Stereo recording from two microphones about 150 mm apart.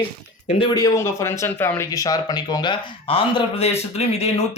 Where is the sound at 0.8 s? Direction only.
20° left (ahead or behind).